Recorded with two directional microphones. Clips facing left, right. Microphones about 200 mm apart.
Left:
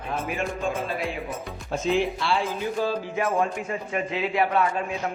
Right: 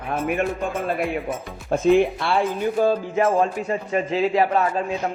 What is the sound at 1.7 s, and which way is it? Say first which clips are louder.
Speech: right 7 dB; 55° right (ahead or behind).